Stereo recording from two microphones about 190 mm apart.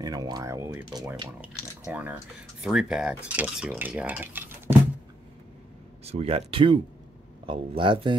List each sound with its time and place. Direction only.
0.0 s speech: 20° right (ahead or behind)
1.9 s speech: 10° right (ahead or behind)
6.0 s speech: 30° right (ahead or behind)